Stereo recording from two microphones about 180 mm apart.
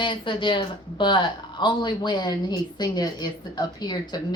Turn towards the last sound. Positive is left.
turn(degrees=25)  # may be behind; listen again after turning